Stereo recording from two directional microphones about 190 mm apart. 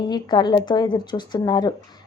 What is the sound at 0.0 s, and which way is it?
A woman's voice, 20° left (ahead or behind).